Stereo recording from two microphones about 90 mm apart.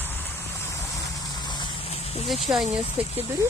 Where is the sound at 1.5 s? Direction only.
55° left (ahead or behind); by 2.1 s 90° left.